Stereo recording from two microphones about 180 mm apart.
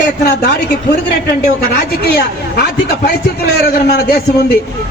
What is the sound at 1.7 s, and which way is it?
A man's voice, 60° left (ahead or behind).